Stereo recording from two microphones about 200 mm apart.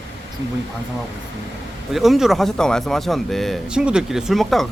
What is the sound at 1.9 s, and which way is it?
Speech, centre (ahead or behind).